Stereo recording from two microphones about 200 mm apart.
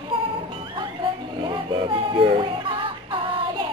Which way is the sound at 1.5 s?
25° right (ahead or behind).